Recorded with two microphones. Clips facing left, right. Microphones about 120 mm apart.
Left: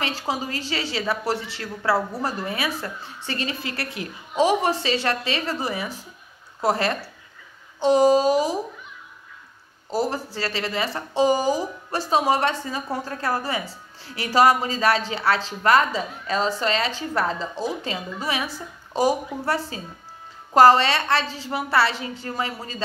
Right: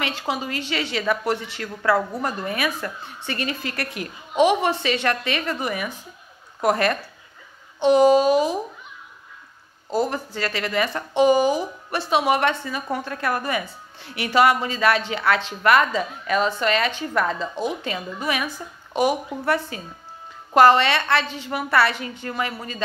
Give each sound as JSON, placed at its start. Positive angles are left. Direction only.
{"t": 0.0, "sound": "a woman's voice", "side_deg": 35}
{"t": 9.9, "sound": "a woman's voice", "side_deg": 30}